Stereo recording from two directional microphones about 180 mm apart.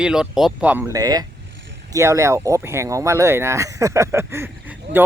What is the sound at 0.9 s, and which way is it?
Speech, 20° right (ahead or behind).